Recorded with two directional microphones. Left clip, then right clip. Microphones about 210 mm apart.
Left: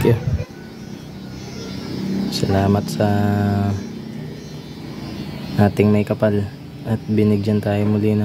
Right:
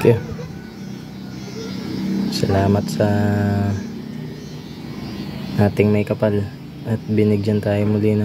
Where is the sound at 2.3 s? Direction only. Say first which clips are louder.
Even; 10° left (ahead or behind).